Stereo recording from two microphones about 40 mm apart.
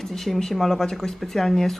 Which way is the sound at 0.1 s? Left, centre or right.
Centre.